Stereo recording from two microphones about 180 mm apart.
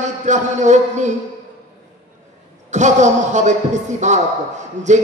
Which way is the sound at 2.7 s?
40° right (ahead or behind).